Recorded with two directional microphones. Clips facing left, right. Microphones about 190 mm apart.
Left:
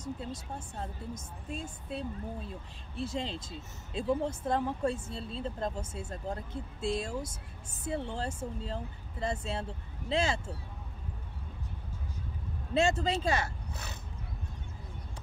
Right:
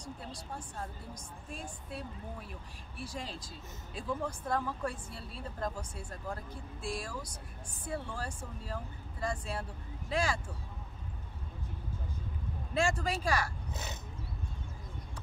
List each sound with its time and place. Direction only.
0.0 s speech: 25° left (ahead or behind)
12.7 s speech: 25° left (ahead or behind)